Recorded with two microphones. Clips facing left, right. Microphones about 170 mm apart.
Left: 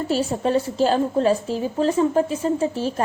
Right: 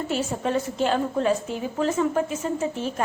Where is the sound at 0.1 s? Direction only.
35° left (ahead or behind).